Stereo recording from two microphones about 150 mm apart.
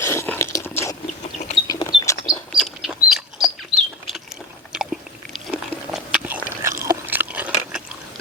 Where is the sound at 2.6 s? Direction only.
Centre (ahead or behind).